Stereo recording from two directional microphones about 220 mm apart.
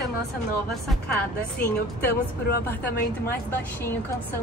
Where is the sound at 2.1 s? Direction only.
45° left (ahead or behind).